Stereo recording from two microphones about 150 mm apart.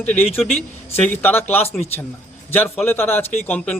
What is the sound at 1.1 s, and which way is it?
Speech, 15° left (ahead or behind).